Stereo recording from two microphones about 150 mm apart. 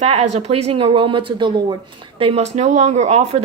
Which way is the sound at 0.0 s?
45° right (ahead or behind).